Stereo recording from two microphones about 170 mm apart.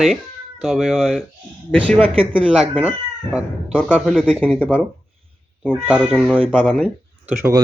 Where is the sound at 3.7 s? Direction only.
5° left (ahead or behind).